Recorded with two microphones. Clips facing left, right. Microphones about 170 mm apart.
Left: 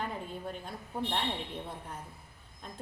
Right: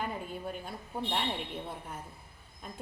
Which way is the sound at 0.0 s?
5° right (ahead or behind).